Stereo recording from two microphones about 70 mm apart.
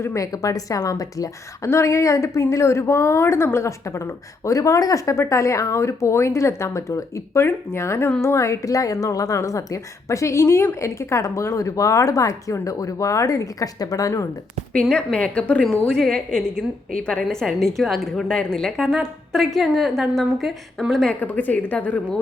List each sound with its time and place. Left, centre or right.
0.0 s a woman's voice: left
14.7 s a woman's voice: centre
21.2 s speech: left